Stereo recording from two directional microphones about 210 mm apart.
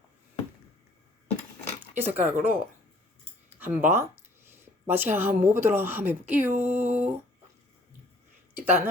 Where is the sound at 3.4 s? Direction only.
10° right (ahead or behind).